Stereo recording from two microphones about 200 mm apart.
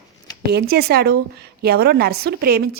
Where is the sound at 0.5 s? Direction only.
50° right (ahead or behind).